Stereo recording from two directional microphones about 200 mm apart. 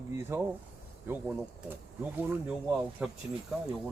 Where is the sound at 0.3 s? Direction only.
15° right (ahead or behind).